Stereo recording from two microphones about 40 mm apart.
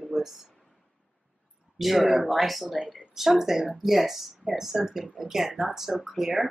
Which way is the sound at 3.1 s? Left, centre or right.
Centre.